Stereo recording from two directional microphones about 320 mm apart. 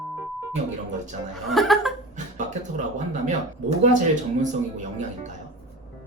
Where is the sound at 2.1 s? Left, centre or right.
Right.